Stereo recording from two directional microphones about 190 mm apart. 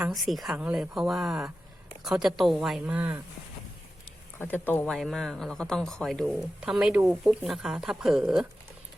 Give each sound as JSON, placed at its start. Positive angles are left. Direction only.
{"t": 0.0, "sound": "speech", "side_deg": 0}
{"t": 4.4, "sound": "speech", "side_deg": 10}